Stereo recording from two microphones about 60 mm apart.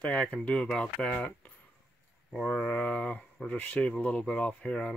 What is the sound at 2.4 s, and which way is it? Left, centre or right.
Speech, centre.